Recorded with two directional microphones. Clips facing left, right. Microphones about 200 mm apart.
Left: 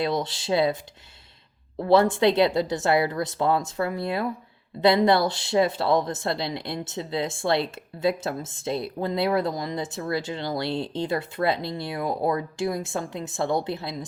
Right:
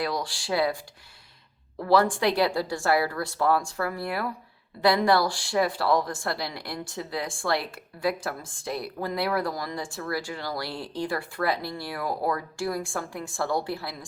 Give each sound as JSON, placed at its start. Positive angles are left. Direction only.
{"t": 0.0, "sound": "speech", "side_deg": 20}
{"t": 1.8, "sound": "speech", "side_deg": 25}